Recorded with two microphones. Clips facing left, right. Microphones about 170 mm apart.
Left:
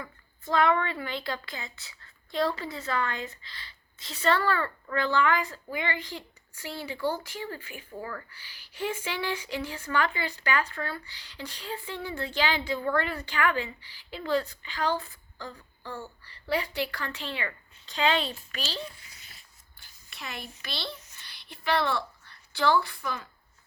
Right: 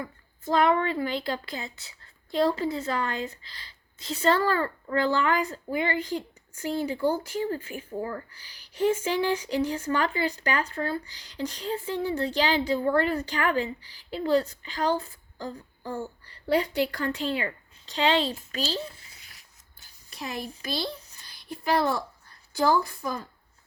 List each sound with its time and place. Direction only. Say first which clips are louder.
0.0 s a woman's voice: right 5 dB; 35° right (ahead or behind)
7.9 s speech: right 5 dB; 25° right (ahead or behind)
8.3 s speech: even; 40° right (ahead or behind)
16.8 s speech: right 7 dB; 45° right (ahead or behind)
20.1 s speech: right 6 dB; 40° right (ahead or behind)